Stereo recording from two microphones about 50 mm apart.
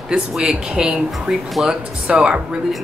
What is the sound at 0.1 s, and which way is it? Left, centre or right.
Speech, centre.